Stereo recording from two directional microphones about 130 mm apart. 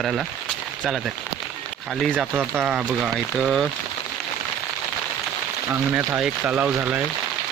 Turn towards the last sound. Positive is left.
turn(degrees=-10)  # may be behind; listen again after turning